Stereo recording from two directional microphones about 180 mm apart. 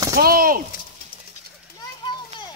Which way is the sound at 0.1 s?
55° right (ahead or behind).